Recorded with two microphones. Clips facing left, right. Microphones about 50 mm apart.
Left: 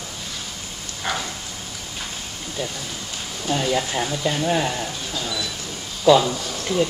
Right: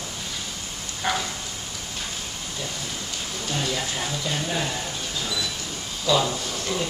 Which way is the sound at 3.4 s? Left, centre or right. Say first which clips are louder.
Left 7 dB; centre.